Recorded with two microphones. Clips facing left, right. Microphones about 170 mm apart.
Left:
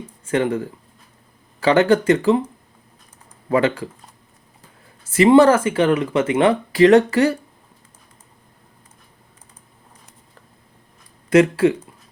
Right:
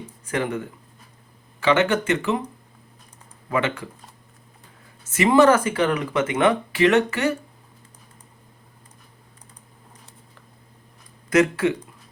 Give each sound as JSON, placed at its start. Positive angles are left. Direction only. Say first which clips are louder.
{"t": 0.3, "sound": "speech", "louder": "left 6 dB", "side_deg": 30}
{"t": 3.5, "sound": "speech", "louder": "left 6 dB", "side_deg": 35}
{"t": 5.0, "sound": "speech", "louder": "left 4 dB", "side_deg": 35}
{"t": 11.3, "sound": "speech", "louder": "left 5 dB", "side_deg": 30}